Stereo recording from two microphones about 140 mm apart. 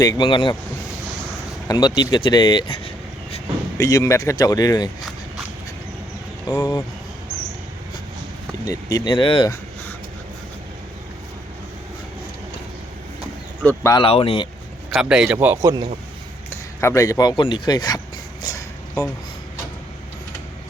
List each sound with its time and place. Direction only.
0.0 s speech: 30° left (ahead or behind)
1.6 s speech: 30° left (ahead or behind)
3.8 s speech: 25° left (ahead or behind)
6.5 s speech: 25° left (ahead or behind)
8.6 s speech: 25° left (ahead or behind)
13.6 s speech: 15° left (ahead or behind)
13.9 s speech: 40° left (ahead or behind)
14.8 s a man's voice: centre (ahead or behind)
16.5 s speech: 20° left (ahead or behind)
18.4 s a sound: 25° left (ahead or behind)